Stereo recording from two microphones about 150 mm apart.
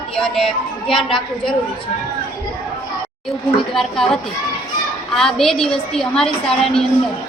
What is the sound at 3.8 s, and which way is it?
A woman's voice, 5° left (ahead or behind).